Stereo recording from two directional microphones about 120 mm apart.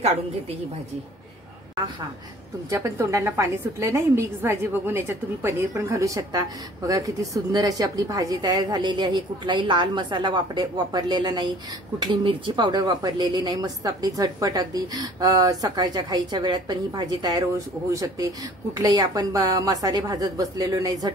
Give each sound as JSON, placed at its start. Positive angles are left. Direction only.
{"t": 2.7, "sound": "a woman's voice", "side_deg": -25}